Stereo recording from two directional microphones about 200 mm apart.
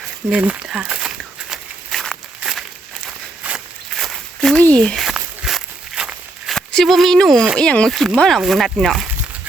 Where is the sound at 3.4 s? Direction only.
5° right (ahead or behind).